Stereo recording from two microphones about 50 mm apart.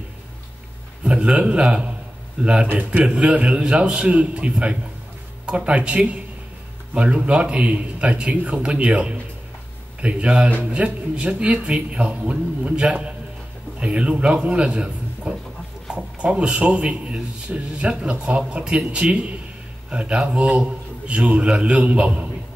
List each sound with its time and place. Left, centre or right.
1.0 s a man's voice: right